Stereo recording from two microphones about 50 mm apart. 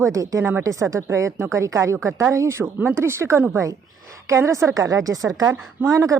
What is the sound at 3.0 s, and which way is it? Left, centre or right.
Speech, right.